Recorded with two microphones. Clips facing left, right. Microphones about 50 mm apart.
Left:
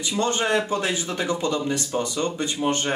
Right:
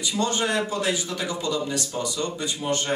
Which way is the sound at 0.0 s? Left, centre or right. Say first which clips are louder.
Left 1 dB; left.